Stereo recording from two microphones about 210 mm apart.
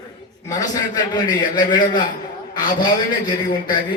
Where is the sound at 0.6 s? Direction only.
20° left (ahead or behind).